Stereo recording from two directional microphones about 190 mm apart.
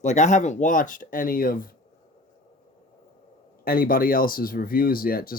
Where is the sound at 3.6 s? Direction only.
50° left (ahead or behind).